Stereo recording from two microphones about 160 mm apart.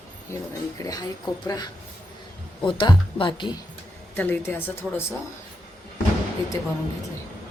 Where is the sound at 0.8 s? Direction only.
25° left (ahead or behind).